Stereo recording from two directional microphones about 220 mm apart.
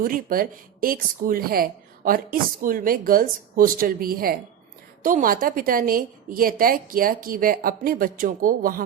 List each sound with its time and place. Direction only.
0.0 s speech: 40° right (ahead or behind)